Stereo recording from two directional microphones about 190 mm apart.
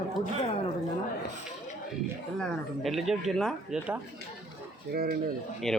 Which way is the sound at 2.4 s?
Centre (ahead or behind).